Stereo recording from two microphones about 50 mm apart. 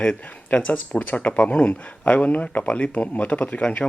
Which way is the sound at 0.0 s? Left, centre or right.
Left.